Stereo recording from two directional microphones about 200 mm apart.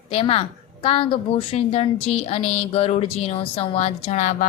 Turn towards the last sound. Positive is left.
turn(degrees=35)  # may be behind; listen again after turning